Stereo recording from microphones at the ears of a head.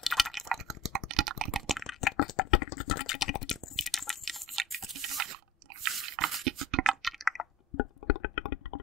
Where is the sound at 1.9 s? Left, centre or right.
Left.